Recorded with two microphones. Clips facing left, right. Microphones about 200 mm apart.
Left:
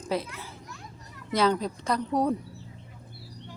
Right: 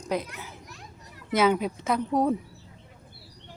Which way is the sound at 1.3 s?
5° right (ahead or behind).